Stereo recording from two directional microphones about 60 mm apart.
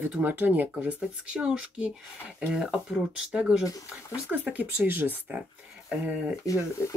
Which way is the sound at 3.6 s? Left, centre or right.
Left.